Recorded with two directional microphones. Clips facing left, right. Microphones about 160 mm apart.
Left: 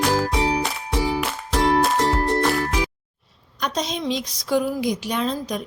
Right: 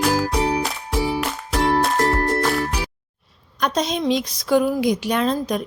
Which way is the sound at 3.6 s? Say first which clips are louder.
Right 4 dB; 55° right (ahead or behind).